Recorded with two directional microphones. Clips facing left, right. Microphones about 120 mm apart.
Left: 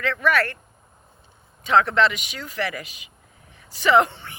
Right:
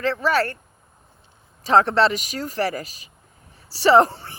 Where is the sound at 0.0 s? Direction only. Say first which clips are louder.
Right 1 dB; 30° right (ahead or behind).